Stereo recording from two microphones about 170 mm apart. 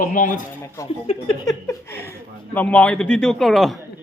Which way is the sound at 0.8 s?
20° left (ahead or behind).